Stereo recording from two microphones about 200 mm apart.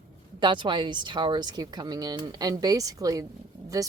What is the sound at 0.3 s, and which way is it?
A woman's voice, 25° right (ahead or behind).